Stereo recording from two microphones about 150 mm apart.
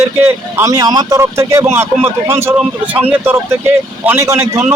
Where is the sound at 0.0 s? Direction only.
15° right (ahead or behind).